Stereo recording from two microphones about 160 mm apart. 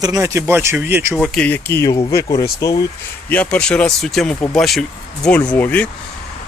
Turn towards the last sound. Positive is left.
turn(degrees=10)  # may be behind; listen again after turning